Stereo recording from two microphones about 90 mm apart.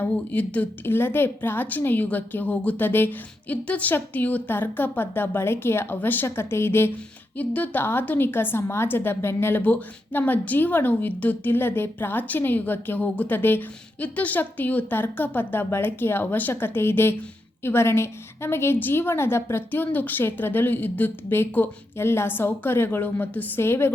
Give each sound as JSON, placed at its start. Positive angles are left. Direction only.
{"t": 0.0, "sound": "a woman's voice", "side_deg": 15}